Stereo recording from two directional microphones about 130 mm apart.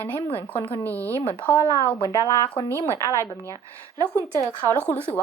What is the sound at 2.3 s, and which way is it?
Speech, 25° left (ahead or behind).